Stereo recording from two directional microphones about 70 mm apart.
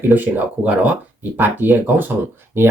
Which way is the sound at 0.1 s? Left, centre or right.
Right.